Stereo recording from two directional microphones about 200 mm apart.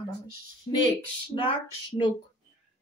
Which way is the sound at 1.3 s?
25° left (ahead or behind).